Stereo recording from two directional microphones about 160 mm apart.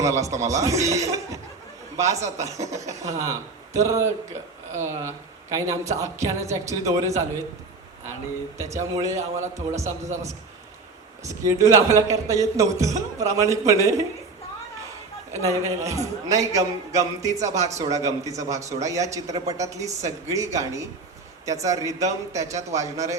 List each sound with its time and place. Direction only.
0.0 s a man's voice: 20° right (ahead or behind)
8.5 s a man's voice: 20° right (ahead or behind)
11.2 s a man's voice: 20° right (ahead or behind)
15.3 s a man's voice: 20° right (ahead or behind)